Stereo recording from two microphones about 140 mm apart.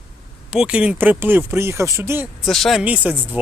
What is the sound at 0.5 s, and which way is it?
Speech, 5° right (ahead or behind).